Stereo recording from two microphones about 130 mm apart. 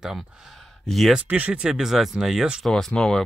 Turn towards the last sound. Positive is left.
turn(degrees=5)  # may be behind; listen again after turning